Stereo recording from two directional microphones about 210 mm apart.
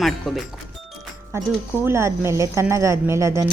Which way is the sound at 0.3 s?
Centre (ahead or behind).